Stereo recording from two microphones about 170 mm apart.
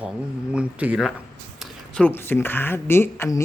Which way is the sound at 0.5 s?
5° right (ahead or behind).